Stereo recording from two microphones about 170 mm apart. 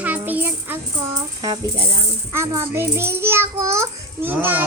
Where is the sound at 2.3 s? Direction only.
15° right (ahead or behind).